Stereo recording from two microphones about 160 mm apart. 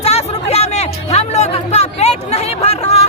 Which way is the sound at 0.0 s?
40° left (ahead or behind).